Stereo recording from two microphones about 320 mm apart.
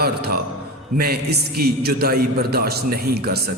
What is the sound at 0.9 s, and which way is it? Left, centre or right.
A man's voice, right.